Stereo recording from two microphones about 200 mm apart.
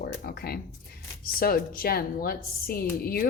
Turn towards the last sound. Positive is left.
turn(degrees=45)  # may be behind; listen again after turning